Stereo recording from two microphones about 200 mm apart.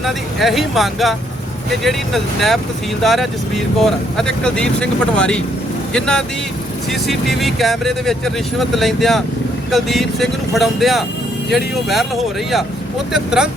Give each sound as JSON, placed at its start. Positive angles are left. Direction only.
{"t": 0.0, "sound": "speech", "side_deg": 0}
{"t": 13.1, "sound": "speech", "side_deg": -5}